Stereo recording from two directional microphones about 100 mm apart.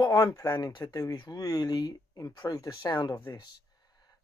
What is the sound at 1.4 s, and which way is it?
Speech, 40° left (ahead or behind).